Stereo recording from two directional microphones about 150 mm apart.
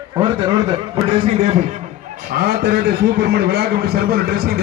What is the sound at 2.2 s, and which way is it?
A man's voice, 85° right.